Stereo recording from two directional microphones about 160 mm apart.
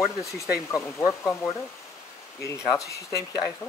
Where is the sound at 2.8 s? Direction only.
20° left (ahead or behind).